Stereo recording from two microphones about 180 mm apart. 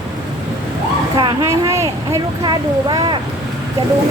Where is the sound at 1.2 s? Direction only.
20° right (ahead or behind).